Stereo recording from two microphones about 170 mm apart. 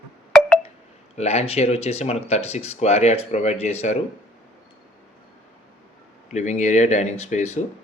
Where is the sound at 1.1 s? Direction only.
40° left (ahead or behind).